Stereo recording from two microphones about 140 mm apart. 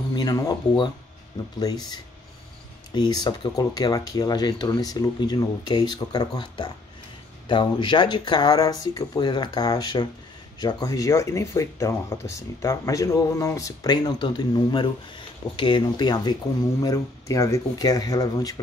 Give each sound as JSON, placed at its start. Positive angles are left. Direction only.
{"t": 0.1, "sound": "speech", "side_deg": 25}